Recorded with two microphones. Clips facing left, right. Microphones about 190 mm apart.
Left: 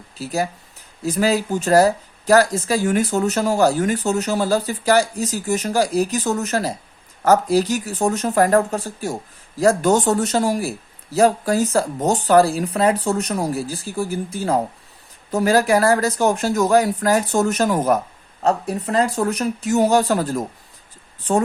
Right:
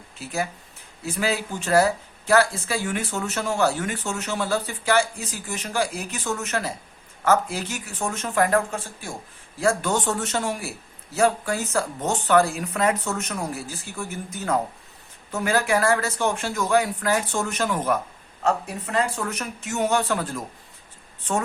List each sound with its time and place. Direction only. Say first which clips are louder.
0.2 s speech: left 5 dB; 35° left (ahead or behind)